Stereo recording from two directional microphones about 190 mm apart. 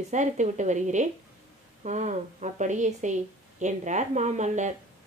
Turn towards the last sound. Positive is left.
turn(degrees=-40)  # may be behind; listen again after turning